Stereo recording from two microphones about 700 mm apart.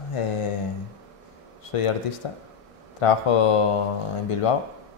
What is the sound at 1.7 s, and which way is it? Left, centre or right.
Speech, left.